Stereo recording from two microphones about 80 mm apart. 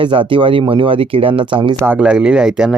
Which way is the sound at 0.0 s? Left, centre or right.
Right.